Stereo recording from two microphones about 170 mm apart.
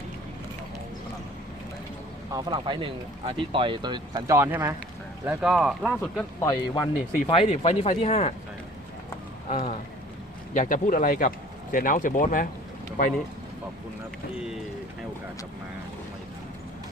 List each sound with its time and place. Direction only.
2.3 s speech: 25° right (ahead or behind); by 6.2 s centre (ahead or behind)
6.4 s speech: 20° left (ahead or behind)
7.3 s speech: 35° left (ahead or behind)
9.5 s speech: 35° left (ahead or behind)
10.5 s speech: 50° left (ahead or behind)
14.3 s speech: 5° right (ahead or behind)